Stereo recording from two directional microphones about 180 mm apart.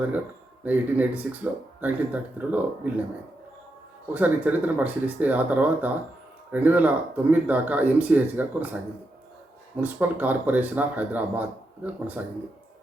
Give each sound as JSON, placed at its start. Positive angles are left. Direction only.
{"t": 0.6, "sound": "speech", "side_deg": -10}
{"t": 4.1, "sound": "speech", "side_deg": -10}
{"t": 9.8, "sound": "speech", "side_deg": -10}